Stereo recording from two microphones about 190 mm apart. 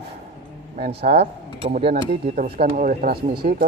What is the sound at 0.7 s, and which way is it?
A woman's voice, 45° right (ahead or behind).